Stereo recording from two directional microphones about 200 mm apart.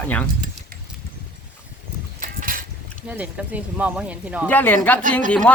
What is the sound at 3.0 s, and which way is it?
Speech, 5° right (ahead or behind).